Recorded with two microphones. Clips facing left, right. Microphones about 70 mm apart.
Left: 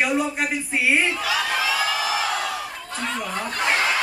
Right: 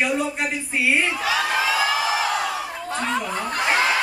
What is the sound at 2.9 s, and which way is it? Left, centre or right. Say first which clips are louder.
Snicker: right 4 dB; centre.